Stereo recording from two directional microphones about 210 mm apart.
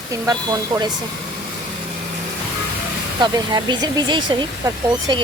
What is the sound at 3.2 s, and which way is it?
Speech, 20° right (ahead or behind).